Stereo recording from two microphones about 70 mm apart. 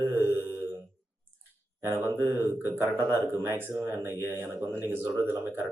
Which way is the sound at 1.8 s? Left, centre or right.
Right.